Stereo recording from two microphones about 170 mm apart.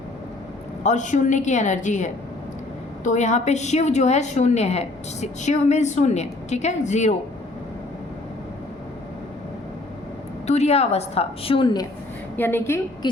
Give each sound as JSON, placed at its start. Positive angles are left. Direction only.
{"t": 0.9, "sound": "a woman's voice", "side_deg": 45}
{"t": 10.4, "sound": "a woman's voice", "side_deg": 40}
{"t": 12.4, "sound": "a woman's voice", "side_deg": 10}